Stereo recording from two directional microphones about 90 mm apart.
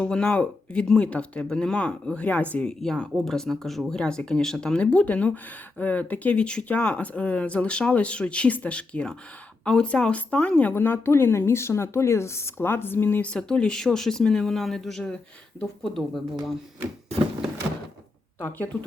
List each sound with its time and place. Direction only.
0.0 s a woman's voice: 10° left (ahead or behind)
13.3 s speech: 10° left (ahead or behind)
18.3 s a woman's voice: 20° left (ahead or behind)